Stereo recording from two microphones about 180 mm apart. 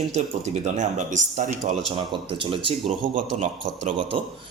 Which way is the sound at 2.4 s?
30° right (ahead or behind).